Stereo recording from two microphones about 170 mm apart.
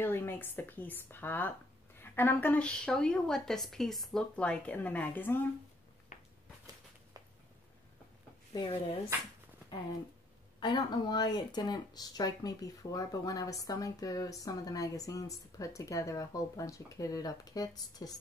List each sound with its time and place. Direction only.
0.0 s a woman's voice: 15° left (ahead or behind)
6.1 s a sound: 45° left (ahead or behind)
10.6 s speech: 25° left (ahead or behind)